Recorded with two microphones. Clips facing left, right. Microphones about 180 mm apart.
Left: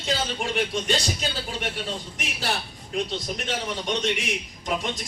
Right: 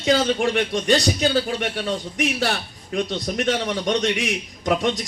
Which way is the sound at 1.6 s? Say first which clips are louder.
Right 6 dB; 65° right (ahead or behind).